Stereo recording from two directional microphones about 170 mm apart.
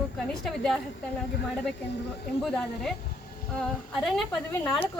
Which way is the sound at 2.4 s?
Centre (ahead or behind).